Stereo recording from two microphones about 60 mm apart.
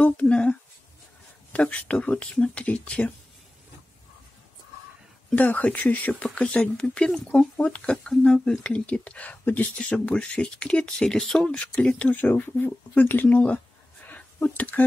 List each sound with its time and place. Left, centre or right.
0.0 s speech: left
5.3 s speech: left
12.1 s speech: left
14.0 s a sound: left